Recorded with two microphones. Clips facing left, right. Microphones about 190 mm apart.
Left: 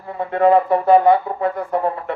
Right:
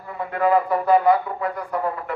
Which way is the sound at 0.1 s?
30° left (ahead or behind).